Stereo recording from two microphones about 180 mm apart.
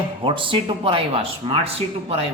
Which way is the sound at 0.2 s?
30° right (ahead or behind).